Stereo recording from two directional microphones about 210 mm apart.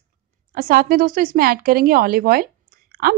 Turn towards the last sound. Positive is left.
turn(degrees=-45)  # may be behind; listen again after turning